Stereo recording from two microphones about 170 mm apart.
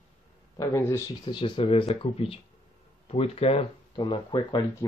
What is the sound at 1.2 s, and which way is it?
Speech, 30° left (ahead or behind).